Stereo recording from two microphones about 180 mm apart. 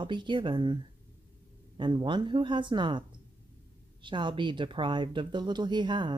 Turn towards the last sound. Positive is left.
turn(degrees=-25)  # may be behind; listen again after turning